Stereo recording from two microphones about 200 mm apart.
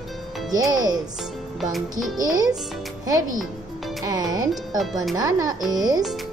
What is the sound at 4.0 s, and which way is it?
Speech, 20° right (ahead or behind).